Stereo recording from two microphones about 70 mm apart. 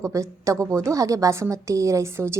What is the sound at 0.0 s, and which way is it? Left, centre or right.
A woman's voice, right.